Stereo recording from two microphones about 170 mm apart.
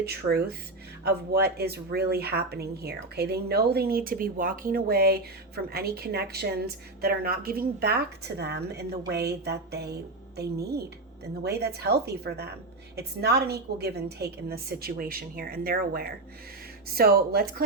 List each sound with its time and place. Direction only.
0.0 s a woman's voice: 70° right (ahead or behind)